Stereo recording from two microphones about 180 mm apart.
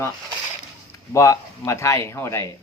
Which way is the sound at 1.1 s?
15° left (ahead or behind).